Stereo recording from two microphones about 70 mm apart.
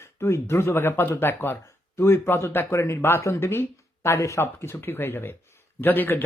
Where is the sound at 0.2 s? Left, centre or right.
Left.